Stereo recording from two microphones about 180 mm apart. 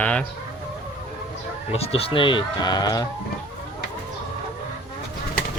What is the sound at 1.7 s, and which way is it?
Speech, 35° left (ahead or behind).